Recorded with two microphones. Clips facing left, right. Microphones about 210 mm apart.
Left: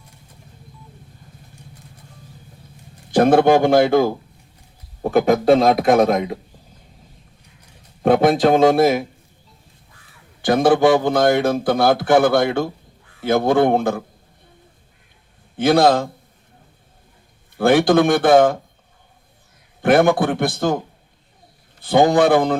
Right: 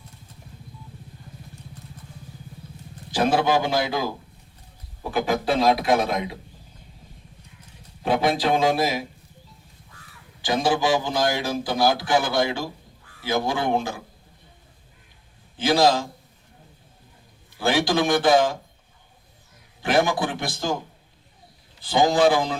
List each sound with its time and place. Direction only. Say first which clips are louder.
3.1 s a man's voice: left 8 dB; 55° left (ahead or behind)
8.0 s a man's voice: left 8 dB; 50° left (ahead or behind)
10.4 s a man's voice: left 8 dB; 55° left (ahead or behind)
15.5 s a man's voice: left 5 dB; 60° left (ahead or behind)
17.6 s a man's voice: left 8 dB; 55° left (ahead or behind)
19.8 s a man's voice: left 7 dB; 55° left (ahead or behind)
21.8 s a man's voice: left 5 dB; 55° left (ahead or behind)